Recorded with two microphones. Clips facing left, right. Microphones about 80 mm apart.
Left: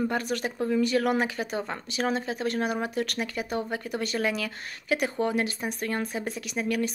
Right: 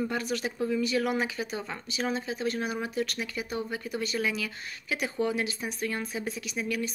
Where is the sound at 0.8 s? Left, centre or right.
Left.